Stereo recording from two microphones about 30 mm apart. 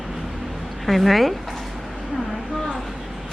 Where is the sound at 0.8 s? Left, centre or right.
Centre.